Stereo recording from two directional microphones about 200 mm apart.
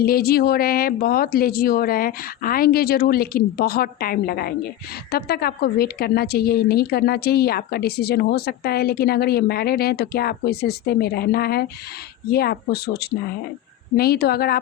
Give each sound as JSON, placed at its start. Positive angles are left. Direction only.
{"t": 0.0, "sound": "a woman's voice", "side_deg": 50}